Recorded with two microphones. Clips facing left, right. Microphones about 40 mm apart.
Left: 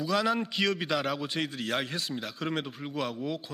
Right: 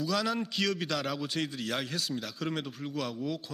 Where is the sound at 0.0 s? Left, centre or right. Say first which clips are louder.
Left 3 dB; centre.